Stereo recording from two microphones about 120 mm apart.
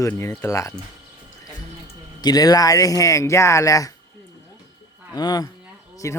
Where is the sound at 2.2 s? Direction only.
35° left (ahead or behind).